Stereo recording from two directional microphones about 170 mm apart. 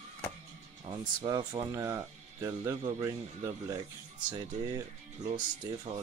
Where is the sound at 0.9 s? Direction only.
25° right (ahead or behind).